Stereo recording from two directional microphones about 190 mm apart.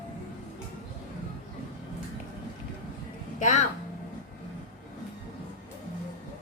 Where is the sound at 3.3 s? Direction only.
40° left (ahead or behind).